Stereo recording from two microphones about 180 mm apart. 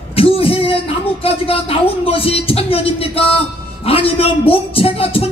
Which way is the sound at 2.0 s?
30° left (ahead or behind).